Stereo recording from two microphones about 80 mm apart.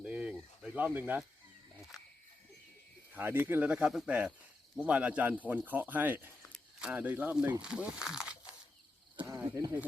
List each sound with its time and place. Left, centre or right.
0.0 s a sound: centre
0.3 s snake: centre
1.9 s cricket: centre
3.1 s speech: right
6.5 s speech: centre
9.2 s speech: right